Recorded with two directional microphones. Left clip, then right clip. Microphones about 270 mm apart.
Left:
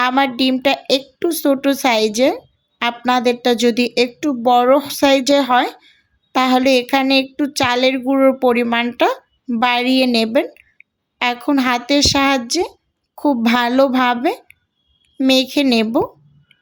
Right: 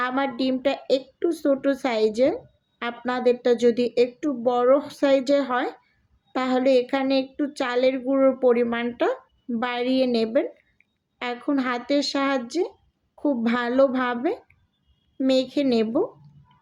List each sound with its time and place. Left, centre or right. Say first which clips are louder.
0.0 s a woman's voice: left 9 dB; left